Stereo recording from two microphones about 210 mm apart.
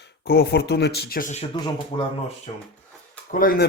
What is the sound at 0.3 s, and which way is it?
Speech, 50° left (ahead or behind).